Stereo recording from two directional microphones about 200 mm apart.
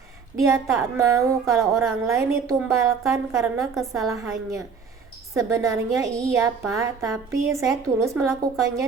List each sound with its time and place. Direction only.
0.3 s a woman's voice: 15° right (ahead or behind)
3.8 s a woman's voice: centre (ahead or behind)
4.1 s a woman's voice: 15° right (ahead or behind)
6.1 s a woman's voice: 5° left (ahead or behind)
6.7 s a woman's voice: 15° right (ahead or behind)